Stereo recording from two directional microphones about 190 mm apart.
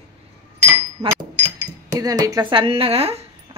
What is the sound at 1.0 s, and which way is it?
Speech, 35° right (ahead or behind).